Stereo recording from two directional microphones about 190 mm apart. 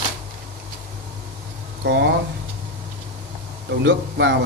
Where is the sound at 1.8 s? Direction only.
65° right (ahead or behind).